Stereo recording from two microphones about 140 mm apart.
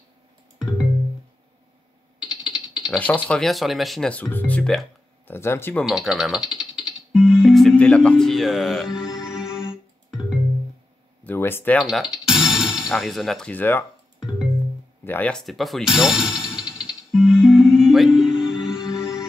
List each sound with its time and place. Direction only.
2.2 s typing: 5° right (ahead or behind)
3.3 s speech: centre (ahead or behind)
5.3 s speech: 15° left (ahead or behind)
5.9 s music: 5° right (ahead or behind)
11.2 s speech: 15° left (ahead or behind)
11.8 s speech: 5° right (ahead or behind)
13.5 s speech: 15° left (ahead or behind)
15.0 s music: 10° left (ahead or behind)